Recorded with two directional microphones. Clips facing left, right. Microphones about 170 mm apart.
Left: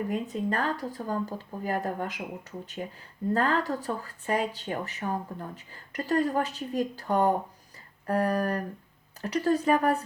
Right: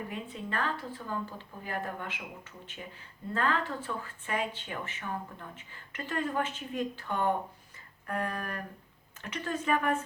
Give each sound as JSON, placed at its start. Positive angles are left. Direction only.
{"t": 0.1, "sound": "speech", "side_deg": 40}